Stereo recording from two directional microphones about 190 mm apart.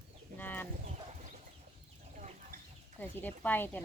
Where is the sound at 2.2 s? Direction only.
40° right (ahead or behind).